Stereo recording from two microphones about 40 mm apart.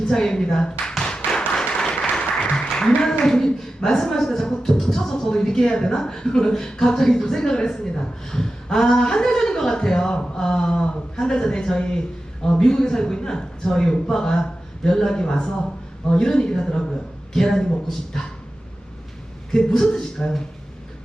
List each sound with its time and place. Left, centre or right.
0.0 s speech: centre
19.5 s speech: centre